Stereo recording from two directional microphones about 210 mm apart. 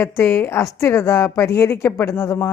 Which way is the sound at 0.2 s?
10° left (ahead or behind).